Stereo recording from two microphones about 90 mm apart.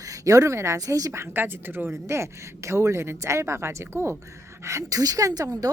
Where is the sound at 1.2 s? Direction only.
25° right (ahead or behind).